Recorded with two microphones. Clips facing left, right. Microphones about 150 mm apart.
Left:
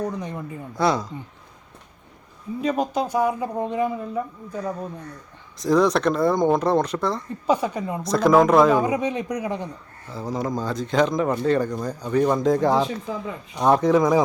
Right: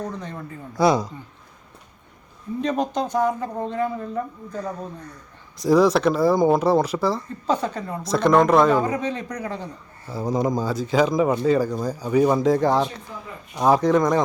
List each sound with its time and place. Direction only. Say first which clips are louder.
0.0 s speech: left 3 dB; 15° left (ahead or behind)
0.8 s speech: right 3 dB; 15° right (ahead or behind)
2.6 s speech: even; 5° left (ahead or behind)
5.5 s speech: right 2 dB; 10° right (ahead or behind)
7.4 s speech: left 2 dB; 10° left (ahead or behind)
8.0 s speech: left 1 dB; centre (ahead or behind)
8.8 s speech: left 2 dB; 15° left (ahead or behind)
10.1 s speech: right 4 dB; 15° right (ahead or behind); by 14.2 s 5° left (ahead or behind)